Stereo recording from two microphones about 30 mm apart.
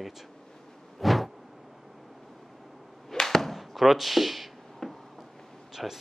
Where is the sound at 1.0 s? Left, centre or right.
Centre.